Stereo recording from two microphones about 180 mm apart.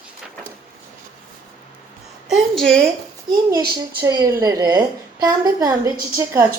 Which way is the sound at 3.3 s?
20° right (ahead or behind).